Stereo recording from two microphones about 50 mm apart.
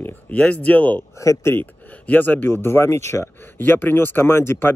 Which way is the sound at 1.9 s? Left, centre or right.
Left.